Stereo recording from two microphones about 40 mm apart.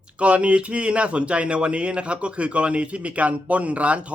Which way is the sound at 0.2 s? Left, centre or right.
Right.